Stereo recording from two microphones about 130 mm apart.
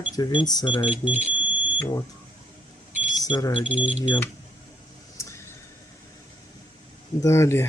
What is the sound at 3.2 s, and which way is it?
Speech, 30° left (ahead or behind).